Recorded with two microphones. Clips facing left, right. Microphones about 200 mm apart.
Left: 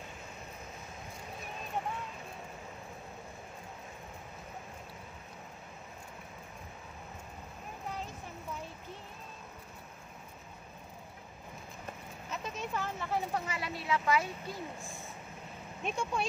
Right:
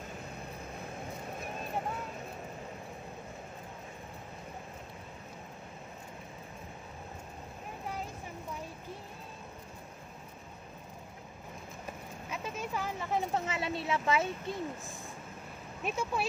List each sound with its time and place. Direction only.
12.3 s a sound: 10° right (ahead or behind)
13.3 s speech: 25° right (ahead or behind)
15.8 s speech: 5° right (ahead or behind)